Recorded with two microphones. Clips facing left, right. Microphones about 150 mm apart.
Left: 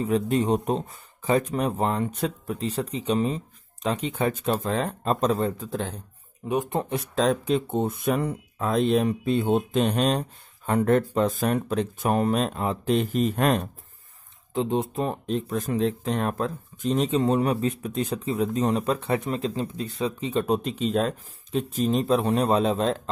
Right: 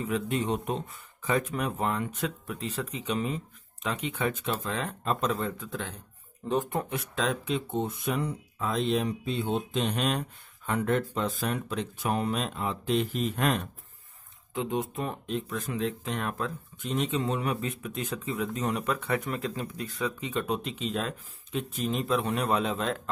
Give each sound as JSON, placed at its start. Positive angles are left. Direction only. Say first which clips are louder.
{"t": 0.0, "sound": "speech", "louder": "left 6 dB", "side_deg": 35}
{"t": 6.4, "sound": "speech", "louder": "left 2 dB", "side_deg": 10}
{"t": 6.7, "sound": "speech", "louder": "left 5 dB", "side_deg": 30}
{"t": 14.5, "sound": "speech", "louder": "left 5 dB", "side_deg": 30}